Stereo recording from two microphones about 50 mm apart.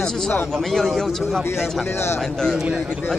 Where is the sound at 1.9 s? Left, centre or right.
Left.